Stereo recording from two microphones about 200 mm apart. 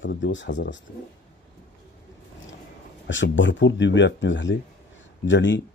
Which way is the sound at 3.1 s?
65° left (ahead or behind).